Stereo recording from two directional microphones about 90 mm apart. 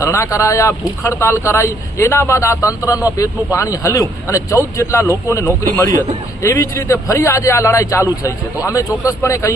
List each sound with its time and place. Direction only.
0.0 s speech: 35° left (ahead or behind)